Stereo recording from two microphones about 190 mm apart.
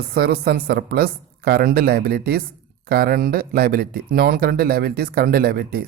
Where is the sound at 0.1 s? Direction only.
55° right (ahead or behind).